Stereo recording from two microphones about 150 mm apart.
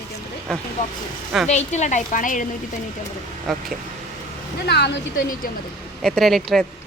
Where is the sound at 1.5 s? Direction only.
50° left (ahead or behind).